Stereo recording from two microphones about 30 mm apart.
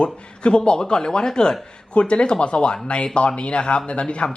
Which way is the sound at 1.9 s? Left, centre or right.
Left.